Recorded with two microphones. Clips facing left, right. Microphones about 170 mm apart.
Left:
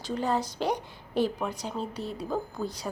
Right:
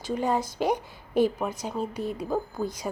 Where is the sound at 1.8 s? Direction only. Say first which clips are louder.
Right 6 dB; 45° right (ahead or behind).